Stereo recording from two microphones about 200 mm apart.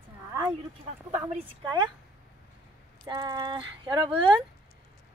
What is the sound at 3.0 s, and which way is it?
Speech, 20° right (ahead or behind).